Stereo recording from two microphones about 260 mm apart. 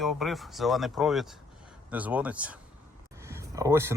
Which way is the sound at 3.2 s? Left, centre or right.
Centre.